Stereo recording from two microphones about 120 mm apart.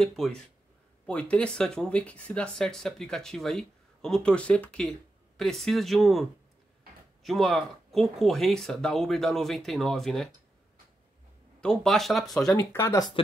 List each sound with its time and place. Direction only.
0.0 s speech: centre (ahead or behind)
7.2 s speech: centre (ahead or behind)
11.6 s speech: 5° left (ahead or behind)
12.5 s speech: 20° left (ahead or behind)